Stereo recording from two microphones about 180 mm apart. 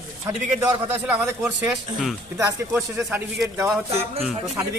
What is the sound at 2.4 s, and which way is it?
Speech, 15° right (ahead or behind).